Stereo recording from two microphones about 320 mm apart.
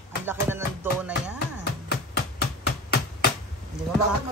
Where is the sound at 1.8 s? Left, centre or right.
Left.